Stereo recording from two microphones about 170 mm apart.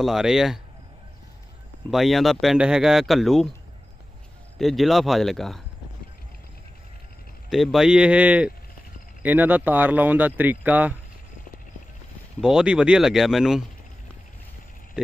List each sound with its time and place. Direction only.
0.0 s speech: centre (ahead or behind)
1.9 s speech: centre (ahead or behind)
4.6 s speech: centre (ahead or behind)
7.4 s speech: centre (ahead or behind)
12.4 s speech: 5° right (ahead or behind)